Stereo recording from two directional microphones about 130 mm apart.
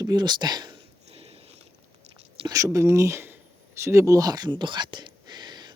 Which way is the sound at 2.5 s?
25° right (ahead or behind).